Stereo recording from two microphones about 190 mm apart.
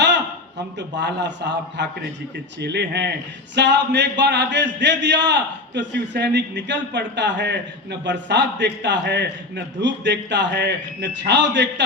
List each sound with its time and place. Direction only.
0.8 s a man's voice: 65° right (ahead or behind)